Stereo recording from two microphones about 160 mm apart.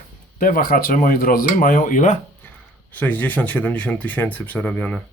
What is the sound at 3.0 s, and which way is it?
Speech, 10° left (ahead or behind).